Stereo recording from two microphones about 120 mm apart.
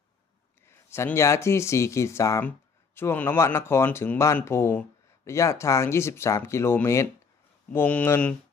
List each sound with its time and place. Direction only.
0.7 s speech: 20° left (ahead or behind)